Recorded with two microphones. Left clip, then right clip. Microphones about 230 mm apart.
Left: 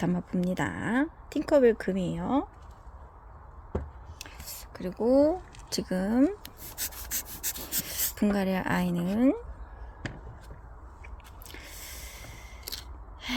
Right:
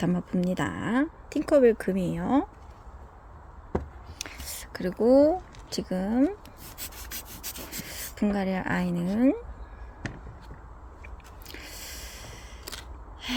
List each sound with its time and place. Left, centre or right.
0.0 s speech: centre
4.2 s a sound: right
4.9 s speech: centre
5.3 s speech: centre
6.7 s rub: centre
7.8 s a sound: left
8.1 s a woman's voice: centre
11.4 s snort: centre
13.2 s gasp: centre